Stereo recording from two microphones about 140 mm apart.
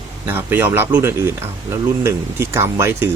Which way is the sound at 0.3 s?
15° right (ahead or behind).